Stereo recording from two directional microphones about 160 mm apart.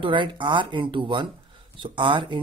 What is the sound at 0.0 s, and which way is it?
Speech, 30° right (ahead or behind).